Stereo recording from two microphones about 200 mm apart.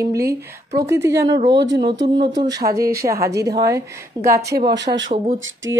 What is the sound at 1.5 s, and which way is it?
Speech, 60° right (ahead or behind).